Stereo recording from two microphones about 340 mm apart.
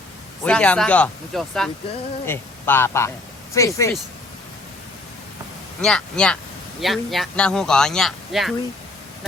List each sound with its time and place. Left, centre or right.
0.4 s speech: centre
5.8 s speech: centre